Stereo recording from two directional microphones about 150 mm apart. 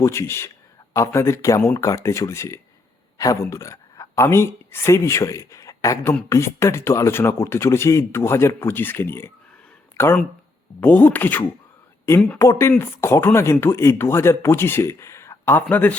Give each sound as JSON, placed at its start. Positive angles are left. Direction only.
{"t": 0.0, "sound": "speech", "side_deg": 20}
{"t": 10.8, "sound": "speech", "side_deg": 10}